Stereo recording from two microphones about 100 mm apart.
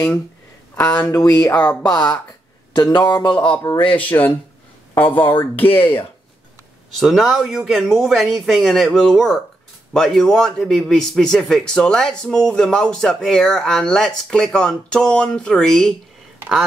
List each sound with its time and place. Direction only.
0.7 s a man's voice: 15° left (ahead or behind)
2.7 s speech: 45° left (ahead or behind)
3.9 s a man's voice: 15° left (ahead or behind)
7.0 s a man's voice: centre (ahead or behind)